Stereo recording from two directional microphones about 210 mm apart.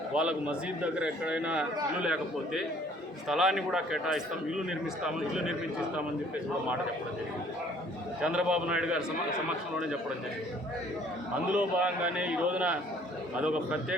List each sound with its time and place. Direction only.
0.1 s a man's voice: 5° right (ahead or behind)
8.2 s a man's voice: 5° right (ahead or behind)
11.5 s a man's voice: 5° right (ahead or behind)